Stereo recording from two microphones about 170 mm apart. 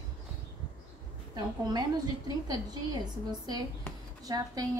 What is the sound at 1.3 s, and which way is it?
A woman's voice, 25° right (ahead or behind).